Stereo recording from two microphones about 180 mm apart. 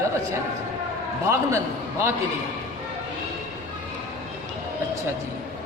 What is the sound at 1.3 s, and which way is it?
Speech, 15° right (ahead or behind).